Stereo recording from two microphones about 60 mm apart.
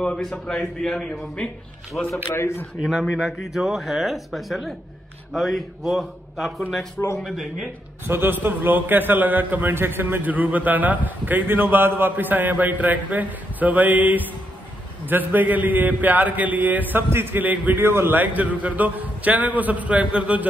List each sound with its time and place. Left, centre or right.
0.0 s a man's voice: centre
2.3 s speech: left
2.8 s a man's voice: centre
8.1 s a man's voice: right
17.1 s a man's voice: right